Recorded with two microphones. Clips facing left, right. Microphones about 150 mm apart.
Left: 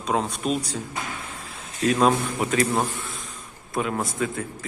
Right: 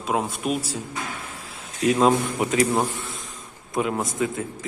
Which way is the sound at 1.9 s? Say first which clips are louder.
Right 1 dB; 20° right (ahead or behind).